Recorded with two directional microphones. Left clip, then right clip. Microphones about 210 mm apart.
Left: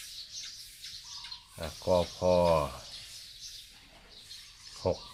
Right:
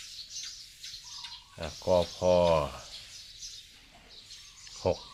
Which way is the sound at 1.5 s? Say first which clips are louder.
Right 2 dB; 5° right (ahead or behind).